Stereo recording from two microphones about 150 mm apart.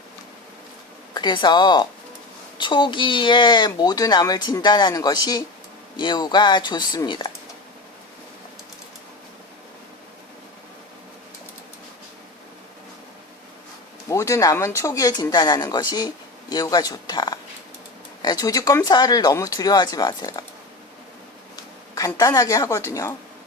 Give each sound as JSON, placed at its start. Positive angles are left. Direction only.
{"t": 1.1, "sound": "speech", "side_deg": 30}
{"t": 14.1, "sound": "speech", "side_deg": 20}
{"t": 21.5, "sound": "speech", "side_deg": 20}